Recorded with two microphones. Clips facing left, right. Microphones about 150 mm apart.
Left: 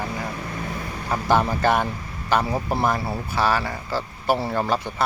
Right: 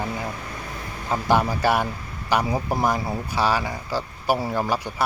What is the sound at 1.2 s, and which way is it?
A man's voice, 10° right (ahead or behind).